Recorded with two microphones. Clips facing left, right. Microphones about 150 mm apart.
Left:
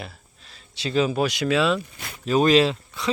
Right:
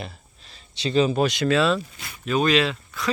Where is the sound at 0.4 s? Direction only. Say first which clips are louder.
Right 2 dB; 5° left (ahead or behind).